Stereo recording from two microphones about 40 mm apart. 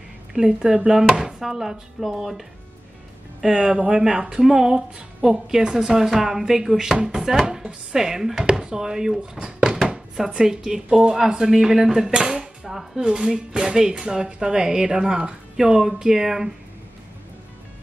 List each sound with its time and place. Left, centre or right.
0.3 s speech: right
3.4 s speech: centre
10.1 s speech: centre; by 15.3 s right
15.6 s speech: centre